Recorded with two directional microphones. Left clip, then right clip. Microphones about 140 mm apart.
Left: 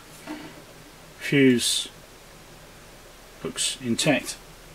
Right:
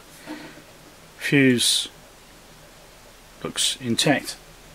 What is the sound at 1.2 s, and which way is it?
Speech, 35° right (ahead or behind).